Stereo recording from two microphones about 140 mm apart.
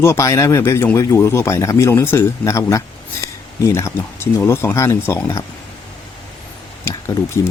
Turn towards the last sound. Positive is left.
turn(degrees=20)  # may be behind; listen again after turning